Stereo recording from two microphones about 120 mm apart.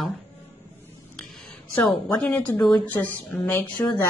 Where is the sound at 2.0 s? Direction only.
15° left (ahead or behind).